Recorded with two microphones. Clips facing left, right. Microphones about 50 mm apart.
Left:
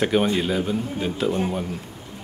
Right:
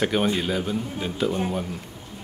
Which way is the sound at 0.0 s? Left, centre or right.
Centre.